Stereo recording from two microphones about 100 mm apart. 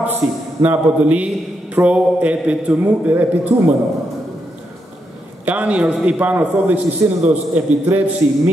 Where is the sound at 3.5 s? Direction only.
35° right (ahead or behind).